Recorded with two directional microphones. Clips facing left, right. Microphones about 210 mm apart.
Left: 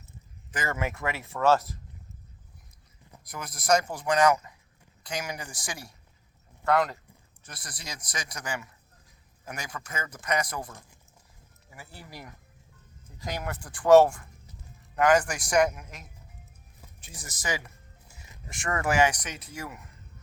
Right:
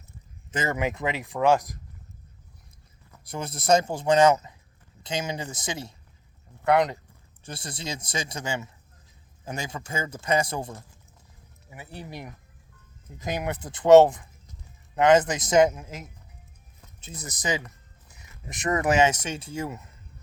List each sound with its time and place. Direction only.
0.5 s speech: 20° right (ahead or behind)
3.2 s speech: 25° right (ahead or behind)